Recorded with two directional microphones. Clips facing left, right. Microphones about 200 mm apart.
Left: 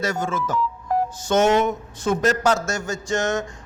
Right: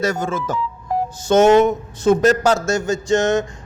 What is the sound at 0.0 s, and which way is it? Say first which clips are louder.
A man's voice: right 3 dB; 35° right (ahead or behind).